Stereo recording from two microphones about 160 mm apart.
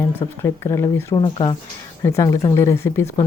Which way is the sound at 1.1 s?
30° left (ahead or behind).